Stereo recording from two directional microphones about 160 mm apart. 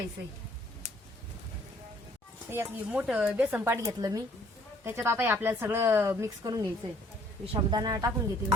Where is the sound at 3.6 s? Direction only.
20° right (ahead or behind).